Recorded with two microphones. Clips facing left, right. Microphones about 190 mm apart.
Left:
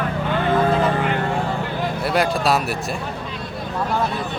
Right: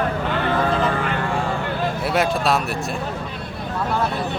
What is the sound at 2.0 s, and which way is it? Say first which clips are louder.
Speech: left 1 dB; centre (ahead or behind).